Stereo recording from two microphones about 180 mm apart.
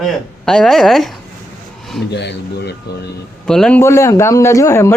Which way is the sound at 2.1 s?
70° left (ahead or behind).